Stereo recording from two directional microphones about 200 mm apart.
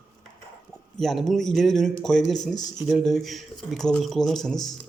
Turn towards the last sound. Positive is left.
turn(degrees=0)  # may be behind; listen again after turning